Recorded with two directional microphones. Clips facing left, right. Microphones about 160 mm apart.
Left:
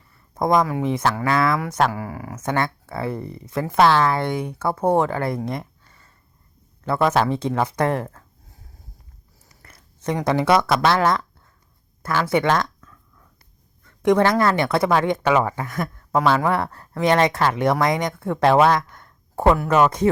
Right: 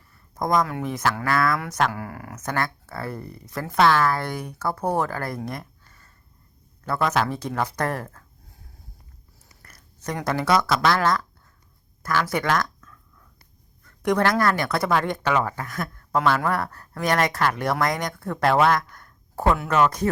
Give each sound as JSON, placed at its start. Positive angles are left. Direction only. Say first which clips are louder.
{"t": 0.3, "sound": "speech", "louder": "left 4 dB", "side_deg": 25}
{"t": 1.9, "sound": "speech", "louder": "left 4 dB", "side_deg": 5}
{"t": 2.4, "sound": "speech", "louder": "left 4 dB", "side_deg": 25}
{"t": 5.5, "sound": "a sound", "louder": "left 5 dB", "side_deg": 25}
{"t": 6.8, "sound": "speech", "louder": "left 4 dB", "side_deg": 25}
{"t": 9.6, "sound": "a sound", "louder": "left 6 dB", "side_deg": 25}
{"t": 10.2, "sound": "speech", "louder": "left 3 dB", "side_deg": 20}
{"t": 12.3, "sound": "speech", "louder": "left 8 dB", "side_deg": 25}
{"t": 13.8, "sound": "speech", "louder": "left 4 dB", "side_deg": 20}
{"t": 16.5, "sound": "speech", "louder": "left 3 dB", "side_deg": 25}